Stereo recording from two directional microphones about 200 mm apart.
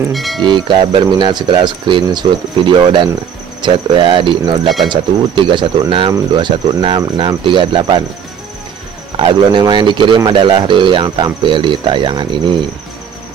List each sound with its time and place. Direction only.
0.1 s speech: centre (ahead or behind)
0.4 s speech: 25° right (ahead or behind)
9.1 s speech: 25° right (ahead or behind)